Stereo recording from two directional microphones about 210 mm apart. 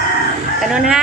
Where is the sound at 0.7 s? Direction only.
Centre (ahead or behind).